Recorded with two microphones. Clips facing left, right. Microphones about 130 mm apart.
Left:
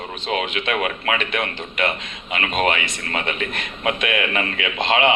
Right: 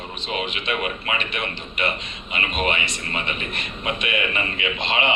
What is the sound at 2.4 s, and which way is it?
A man's voice, 85° left.